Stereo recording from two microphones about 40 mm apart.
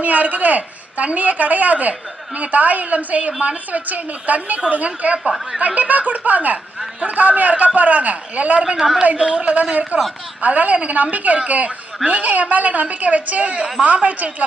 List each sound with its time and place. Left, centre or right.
0.0 s a woman's voice: right
8.8 s a man's voice: centre
9.3 s a woman's voice: right